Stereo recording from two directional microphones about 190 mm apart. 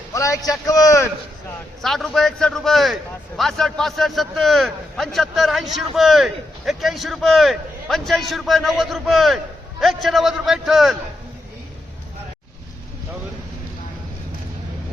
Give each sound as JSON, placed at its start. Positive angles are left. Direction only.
{"t": 0.1, "sound": "a man's voice", "side_deg": 15}
{"t": 1.8, "sound": "a man's voice", "side_deg": 0}